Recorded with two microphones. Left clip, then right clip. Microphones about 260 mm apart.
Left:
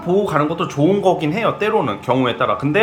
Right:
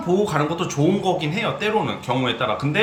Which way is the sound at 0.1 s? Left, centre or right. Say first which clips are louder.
Left 4 dB; centre.